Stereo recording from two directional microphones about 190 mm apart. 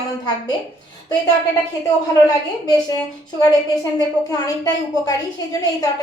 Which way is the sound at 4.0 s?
20° left (ahead or behind).